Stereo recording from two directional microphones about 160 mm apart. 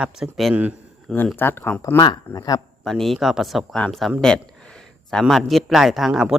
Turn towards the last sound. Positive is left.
turn(degrees=0)  # may be behind; listen again after turning